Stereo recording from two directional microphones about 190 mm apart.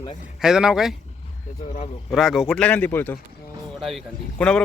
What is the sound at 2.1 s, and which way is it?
Speech, centre (ahead or behind).